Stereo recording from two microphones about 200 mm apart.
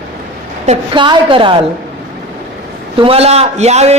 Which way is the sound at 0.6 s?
25° right (ahead or behind).